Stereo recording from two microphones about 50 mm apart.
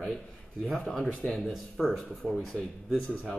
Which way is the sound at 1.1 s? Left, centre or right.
Left.